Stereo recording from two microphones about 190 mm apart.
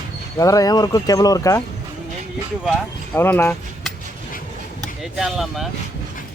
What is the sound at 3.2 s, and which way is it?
Speech, 10° left (ahead or behind).